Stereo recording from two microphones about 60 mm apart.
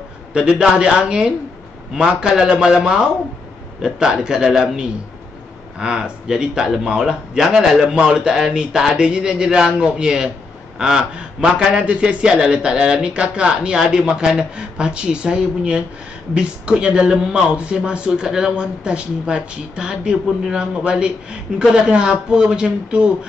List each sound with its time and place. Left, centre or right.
0.3 s speech: centre